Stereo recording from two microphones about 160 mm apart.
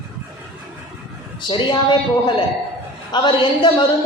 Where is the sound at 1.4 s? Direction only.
30° left (ahead or behind).